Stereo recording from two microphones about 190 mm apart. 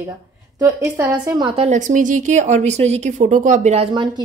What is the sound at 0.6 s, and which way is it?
A woman's voice, 15° right (ahead or behind).